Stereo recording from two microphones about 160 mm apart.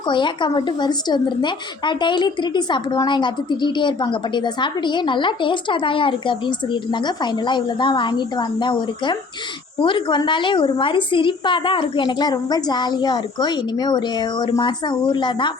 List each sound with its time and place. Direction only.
0.1 s a woman's voice: 30° left (ahead or behind)